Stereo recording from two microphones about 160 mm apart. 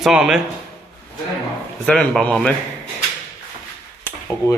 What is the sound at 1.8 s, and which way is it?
Speech, 5° left (ahead or behind).